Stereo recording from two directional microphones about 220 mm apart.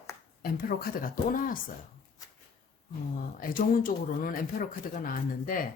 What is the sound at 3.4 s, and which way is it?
Speech, 40° left (ahead or behind).